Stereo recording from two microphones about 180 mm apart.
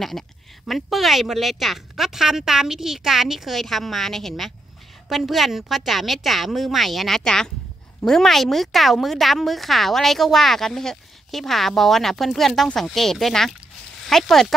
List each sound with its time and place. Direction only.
0.7 s a woman's voice: centre (ahead or behind)